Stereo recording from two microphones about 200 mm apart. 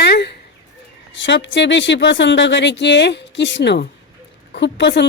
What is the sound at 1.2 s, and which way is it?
A woman's voice, 65° left (ahead or behind).